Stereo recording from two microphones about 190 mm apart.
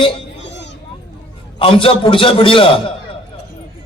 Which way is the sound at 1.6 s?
30° left (ahead or behind).